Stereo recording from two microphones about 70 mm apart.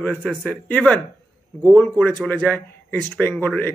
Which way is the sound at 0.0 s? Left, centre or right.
Left.